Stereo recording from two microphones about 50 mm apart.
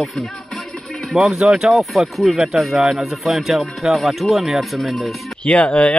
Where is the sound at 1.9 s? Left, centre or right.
Centre.